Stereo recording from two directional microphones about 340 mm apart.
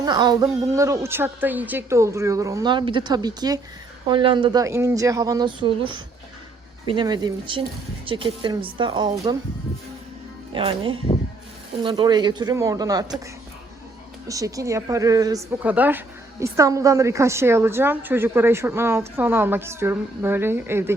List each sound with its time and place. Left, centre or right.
0.0 s a woman's voice: centre
10.5 s a woman's voice: centre
14.3 s a woman's voice: centre